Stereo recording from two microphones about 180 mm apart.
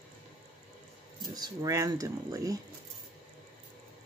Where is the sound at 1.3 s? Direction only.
20° right (ahead or behind).